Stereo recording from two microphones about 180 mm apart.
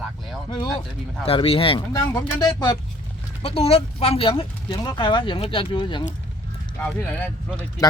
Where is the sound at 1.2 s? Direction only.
30° left (ahead or behind).